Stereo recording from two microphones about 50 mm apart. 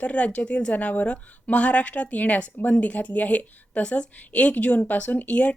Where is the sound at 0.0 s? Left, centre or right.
Left.